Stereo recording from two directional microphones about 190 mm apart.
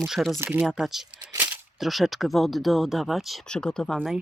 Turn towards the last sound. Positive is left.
turn(degrees=0)  # may be behind; listen again after turning